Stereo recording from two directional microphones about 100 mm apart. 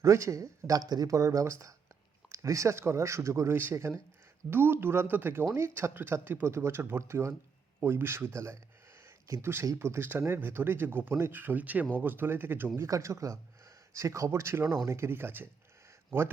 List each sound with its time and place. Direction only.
0.0 s speech: 30° right (ahead or behind)
9.0 s a sound: 30° right (ahead or behind)
9.7 s speech: 25° right (ahead or behind)